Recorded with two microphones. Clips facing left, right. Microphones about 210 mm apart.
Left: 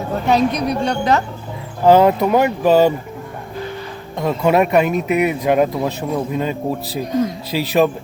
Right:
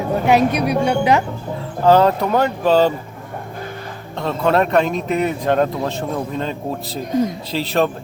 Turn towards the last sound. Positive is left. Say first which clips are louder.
# left 3 dB
turn(degrees=10)  # may be behind; listen again after turning